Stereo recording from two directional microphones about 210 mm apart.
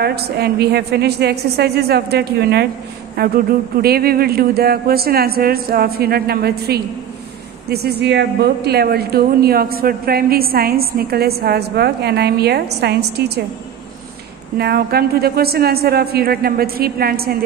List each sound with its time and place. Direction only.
0.0 s speech: 50° right (ahead or behind)
14.6 s speech: 50° right (ahead or behind)